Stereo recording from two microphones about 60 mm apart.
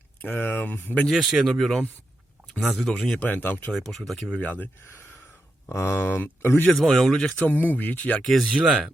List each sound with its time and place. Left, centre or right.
0.2 s speech: left
1.1 s speech: centre
2.8 s speech: centre
3.2 s speech: left
3.7 s speech: centre
4.4 s speech: left
5.6 s speech: left
6.0 s speech: left
6.7 s speech: centre
7.2 s speech: centre
7.5 s speech: left
8.2 s speech: centre
8.5 s speech: centre